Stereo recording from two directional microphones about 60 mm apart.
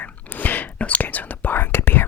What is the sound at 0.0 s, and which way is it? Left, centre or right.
Whispering, left.